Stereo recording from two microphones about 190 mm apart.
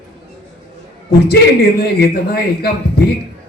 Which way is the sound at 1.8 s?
60° left (ahead or behind).